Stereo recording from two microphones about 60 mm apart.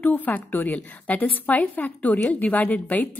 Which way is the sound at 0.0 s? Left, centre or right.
Left.